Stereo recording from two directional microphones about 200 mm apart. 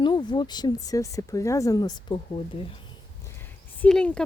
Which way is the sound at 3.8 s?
5° left (ahead or behind).